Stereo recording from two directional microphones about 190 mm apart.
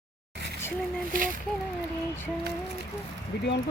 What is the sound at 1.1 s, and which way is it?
Speech, 45° right (ahead or behind).